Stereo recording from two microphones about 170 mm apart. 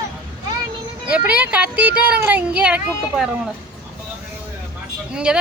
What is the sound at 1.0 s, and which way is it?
A child's voice, 5° right (ahead or behind).